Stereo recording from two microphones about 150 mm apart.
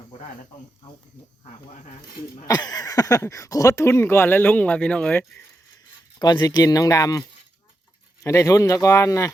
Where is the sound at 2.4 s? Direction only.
25° left (ahead or behind).